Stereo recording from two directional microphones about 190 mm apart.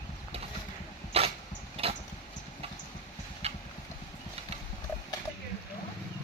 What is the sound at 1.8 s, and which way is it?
Vehicle, 30° right (ahead or behind).